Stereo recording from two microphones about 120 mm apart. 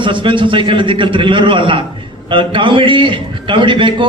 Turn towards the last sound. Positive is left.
turn(degrees=-45)  # may be behind; listen again after turning